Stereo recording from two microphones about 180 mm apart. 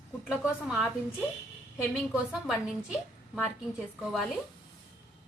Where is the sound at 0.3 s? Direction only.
5° right (ahead or behind).